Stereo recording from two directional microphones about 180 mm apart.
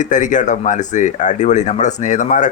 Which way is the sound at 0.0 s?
45° left (ahead or behind).